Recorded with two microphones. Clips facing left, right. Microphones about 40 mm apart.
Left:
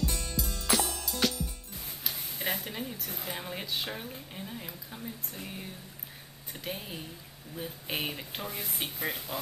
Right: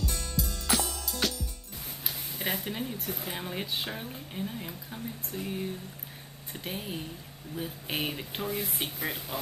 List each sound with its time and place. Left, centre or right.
0.4 s music: centre
2.0 s speech: centre
8.5 s speech: right
8.8 s speech: centre